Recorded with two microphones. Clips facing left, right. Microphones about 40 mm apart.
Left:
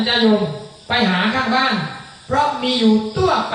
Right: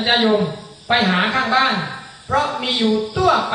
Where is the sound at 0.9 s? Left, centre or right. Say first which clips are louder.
Right 1 dB; centre.